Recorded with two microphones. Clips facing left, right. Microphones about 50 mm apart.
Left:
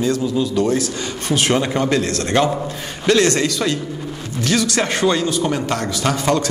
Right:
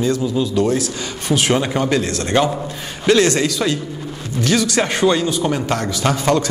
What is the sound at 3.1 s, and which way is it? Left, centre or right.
A man's voice, centre.